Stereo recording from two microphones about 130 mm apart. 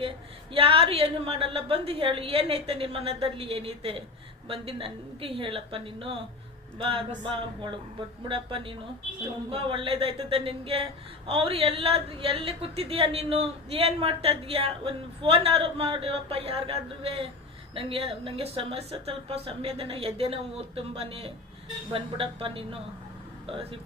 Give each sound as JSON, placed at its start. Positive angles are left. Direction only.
{"t": 0.5, "sound": "a woman's voice", "side_deg": -45}